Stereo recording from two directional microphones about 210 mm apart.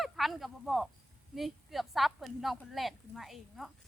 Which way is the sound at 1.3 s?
Centre (ahead or behind).